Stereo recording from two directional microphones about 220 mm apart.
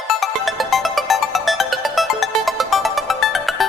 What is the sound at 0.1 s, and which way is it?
Music, centre (ahead or behind).